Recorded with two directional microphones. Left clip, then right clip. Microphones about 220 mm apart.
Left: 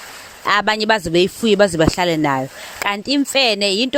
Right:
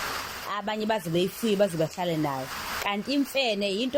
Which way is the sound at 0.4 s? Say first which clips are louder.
Left 15 dB; 45° left (ahead or behind).